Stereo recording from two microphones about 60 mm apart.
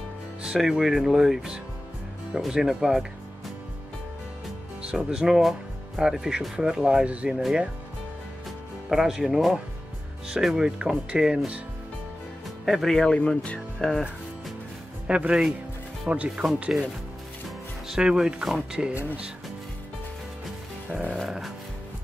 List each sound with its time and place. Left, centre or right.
0.4 s speech: centre
4.8 s speech: centre
8.9 s speech: centre
12.6 s speech: centre
15.0 s speech: centre
17.8 s speech: centre
20.9 s speech: centre
21.2 s speech: centre